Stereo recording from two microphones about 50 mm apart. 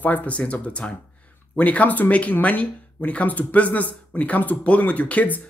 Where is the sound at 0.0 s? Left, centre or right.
Left.